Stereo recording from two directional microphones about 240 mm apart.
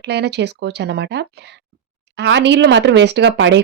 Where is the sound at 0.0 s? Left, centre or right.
Right.